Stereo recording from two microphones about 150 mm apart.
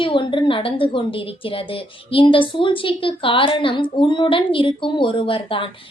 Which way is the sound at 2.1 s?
35° left (ahead or behind).